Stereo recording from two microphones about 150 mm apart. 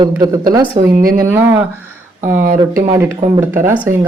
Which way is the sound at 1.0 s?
75° right (ahead or behind).